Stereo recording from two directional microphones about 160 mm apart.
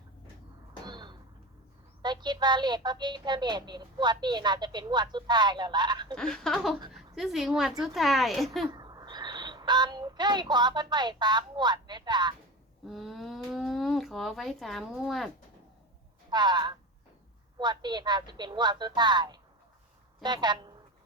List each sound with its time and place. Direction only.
0.9 s a sound: 25° right (ahead or behind)
2.0 s speech: 25° right (ahead or behind)
6.1 s a woman's voice: 5° left (ahead or behind)
8.6 s a child's voice: 25° right (ahead or behind)
12.9 s speech: centre (ahead or behind)
16.3 s speech: 25° right (ahead or behind)